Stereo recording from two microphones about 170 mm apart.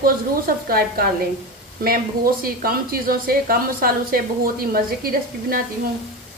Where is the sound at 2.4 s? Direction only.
60° right (ahead or behind).